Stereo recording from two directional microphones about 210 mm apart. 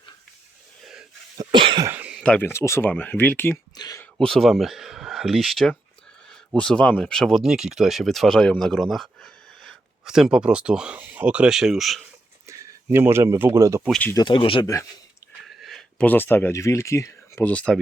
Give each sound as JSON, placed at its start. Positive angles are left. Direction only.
{"t": 0.8, "sound": "a sound", "side_deg": 0}
{"t": 1.4, "sound": "cough", "side_deg": -20}
{"t": 1.9, "sound": "a sound", "side_deg": -5}
{"t": 2.2, "sound": "speech", "side_deg": 10}
{"t": 4.2, "sound": "speech", "side_deg": 0}
{"t": 12.5, "sound": "speech", "side_deg": -10}
{"t": 13.9, "sound": "speech", "side_deg": 10}
{"t": 15.4, "sound": "speech", "side_deg": 0}